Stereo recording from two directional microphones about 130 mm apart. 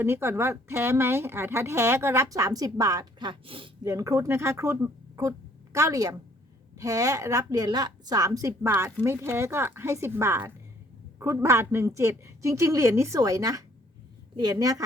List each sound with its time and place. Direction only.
0.0 s speech: 20° right (ahead or behind); by 3.7 s 45° right (ahead or behind)
3.8 s speech: 25° right (ahead or behind)